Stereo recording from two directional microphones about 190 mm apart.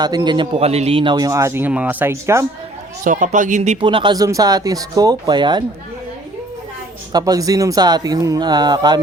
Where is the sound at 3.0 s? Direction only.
45° right (ahead or behind); by 5.6 s 25° right (ahead or behind).